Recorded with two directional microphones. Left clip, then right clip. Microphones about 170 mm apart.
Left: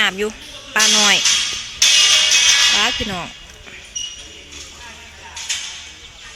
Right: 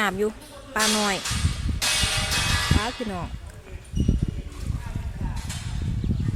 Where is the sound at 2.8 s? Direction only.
5° left (ahead or behind).